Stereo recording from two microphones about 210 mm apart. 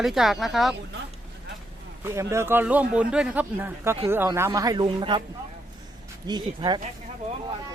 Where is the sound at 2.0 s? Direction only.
10° right (ahead or behind).